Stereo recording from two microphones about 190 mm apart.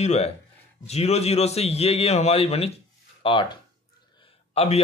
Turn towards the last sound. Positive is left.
turn(degrees=35)  # may be behind; listen again after turning